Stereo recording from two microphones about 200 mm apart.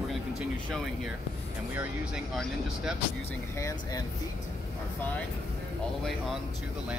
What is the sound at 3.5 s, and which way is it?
Speech, 15° left (ahead or behind).